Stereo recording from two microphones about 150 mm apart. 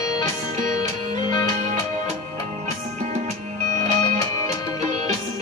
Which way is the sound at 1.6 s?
50° right (ahead or behind).